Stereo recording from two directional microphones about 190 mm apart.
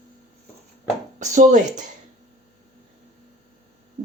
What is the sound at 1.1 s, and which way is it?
Speech, 40° right (ahead or behind).